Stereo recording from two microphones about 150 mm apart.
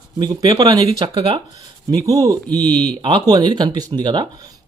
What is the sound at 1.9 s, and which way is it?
Speech, 25° right (ahead or behind).